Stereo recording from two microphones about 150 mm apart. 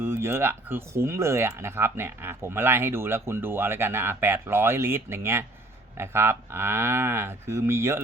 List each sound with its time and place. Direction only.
0.0 s speech: 15° right (ahead or behind)